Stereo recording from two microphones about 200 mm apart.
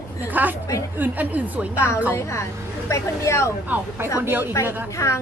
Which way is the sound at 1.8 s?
15° left (ahead or behind).